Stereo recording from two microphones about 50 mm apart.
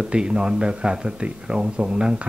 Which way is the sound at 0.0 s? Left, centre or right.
Centre.